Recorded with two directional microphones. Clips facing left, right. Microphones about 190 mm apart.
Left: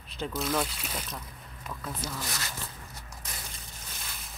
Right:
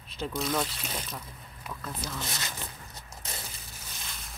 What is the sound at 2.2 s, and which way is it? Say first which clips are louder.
Speech: even; 25° right (ahead or behind).